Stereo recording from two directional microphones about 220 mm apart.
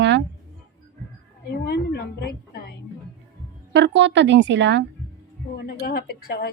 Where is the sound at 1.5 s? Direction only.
50° left (ahead or behind).